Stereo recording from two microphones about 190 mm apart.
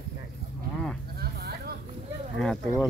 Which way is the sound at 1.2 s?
55° right (ahead or behind).